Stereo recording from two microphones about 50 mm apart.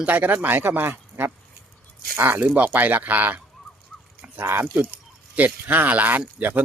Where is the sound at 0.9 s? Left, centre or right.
Right.